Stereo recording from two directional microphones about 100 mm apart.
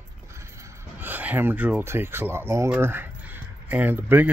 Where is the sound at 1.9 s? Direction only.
25° right (ahead or behind).